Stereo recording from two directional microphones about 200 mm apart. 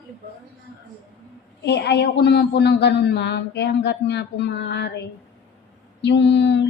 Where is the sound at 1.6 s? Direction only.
60° left (ahead or behind).